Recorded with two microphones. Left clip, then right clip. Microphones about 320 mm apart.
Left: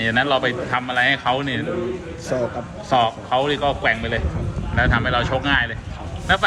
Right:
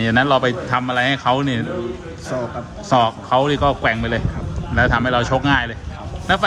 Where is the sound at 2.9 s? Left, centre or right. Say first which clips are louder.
Right 3 dB; right.